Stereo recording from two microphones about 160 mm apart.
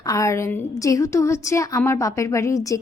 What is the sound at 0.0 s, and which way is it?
A woman's voice, 20° left (ahead or behind).